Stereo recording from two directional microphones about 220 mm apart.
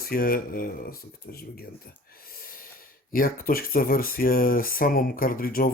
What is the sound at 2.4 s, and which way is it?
Snort, 40° left (ahead or behind).